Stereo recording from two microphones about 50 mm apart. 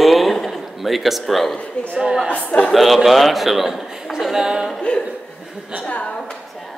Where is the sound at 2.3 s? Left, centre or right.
Left.